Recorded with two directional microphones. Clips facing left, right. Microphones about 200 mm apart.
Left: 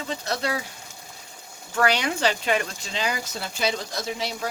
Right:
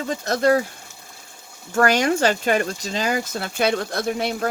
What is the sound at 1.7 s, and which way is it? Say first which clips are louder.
Speech: right 5 dB; 45° right (ahead or behind).